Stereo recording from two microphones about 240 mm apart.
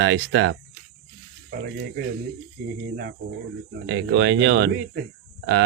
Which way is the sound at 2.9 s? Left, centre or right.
Right.